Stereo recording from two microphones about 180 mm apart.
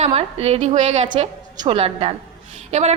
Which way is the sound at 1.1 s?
25° right (ahead or behind).